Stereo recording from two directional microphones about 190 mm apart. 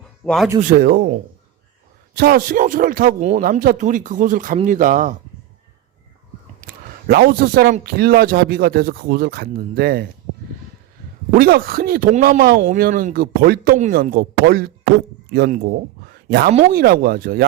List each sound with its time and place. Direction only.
0.3 s speech: centre (ahead or behind)
0.7 s a man's voice: 55° right (ahead or behind)
2.1 s a man's voice: 50° right (ahead or behind)
6.6 s a man's voice: 55° right (ahead or behind)
11.3 s a man's voice: 50° right (ahead or behind)
16.7 s a man's voice: 50° right (ahead or behind)